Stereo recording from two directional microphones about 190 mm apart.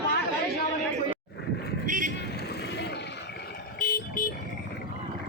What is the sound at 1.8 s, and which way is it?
Vehicle, 45° right (ahead or behind).